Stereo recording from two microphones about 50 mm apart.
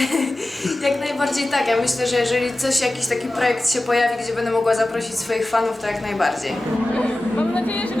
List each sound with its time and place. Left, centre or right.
0.0 s a sound: centre
0.9 s a woman's voice: centre
6.9 s speech: centre